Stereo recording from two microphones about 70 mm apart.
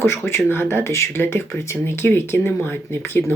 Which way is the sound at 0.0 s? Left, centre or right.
Left.